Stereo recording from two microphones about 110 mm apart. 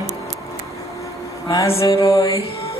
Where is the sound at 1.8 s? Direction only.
30° left (ahead or behind).